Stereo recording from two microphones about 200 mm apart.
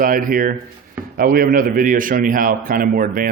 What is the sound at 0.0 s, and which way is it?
Speech, 45° right (ahead or behind).